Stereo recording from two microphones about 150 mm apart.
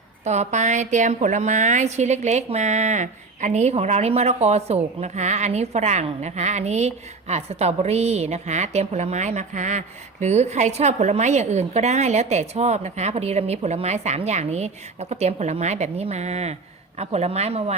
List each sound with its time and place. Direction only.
0.3 s a woman's voice: 50° right (ahead or behind)